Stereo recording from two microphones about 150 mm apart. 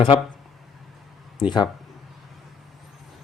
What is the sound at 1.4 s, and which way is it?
Speech, 30° left (ahead or behind).